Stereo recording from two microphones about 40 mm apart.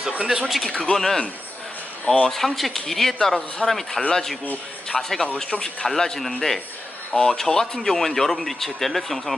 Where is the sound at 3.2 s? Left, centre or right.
Centre.